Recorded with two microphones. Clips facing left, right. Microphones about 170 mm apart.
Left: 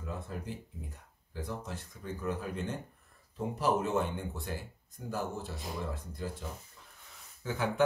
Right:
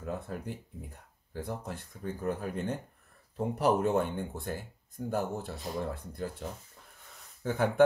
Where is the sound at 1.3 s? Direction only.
55° right (ahead or behind).